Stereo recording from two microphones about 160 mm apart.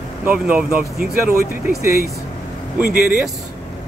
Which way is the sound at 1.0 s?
65° right (ahead or behind).